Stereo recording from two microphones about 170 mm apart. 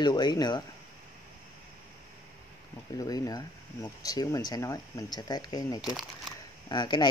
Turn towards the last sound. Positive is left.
turn(degrees=25)  # may be behind; listen again after turning